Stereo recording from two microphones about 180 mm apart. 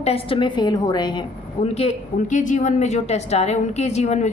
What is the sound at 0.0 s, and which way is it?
A woman's voice, 30° left (ahead or behind).